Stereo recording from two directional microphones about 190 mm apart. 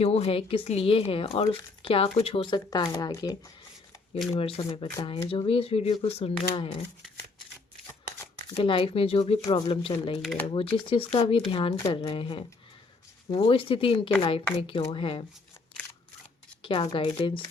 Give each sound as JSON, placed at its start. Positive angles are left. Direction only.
{"t": 0.0, "sound": "speech", "side_deg": 30}
{"t": 4.4, "sound": "speech", "side_deg": 30}
{"t": 8.5, "sound": "speech", "side_deg": 30}
{"t": 16.6, "sound": "speech", "side_deg": 25}